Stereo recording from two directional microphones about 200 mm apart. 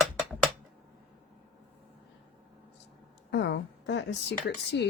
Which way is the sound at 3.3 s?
60° left (ahead or behind).